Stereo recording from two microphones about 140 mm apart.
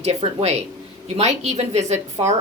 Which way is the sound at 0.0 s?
50° right (ahead or behind).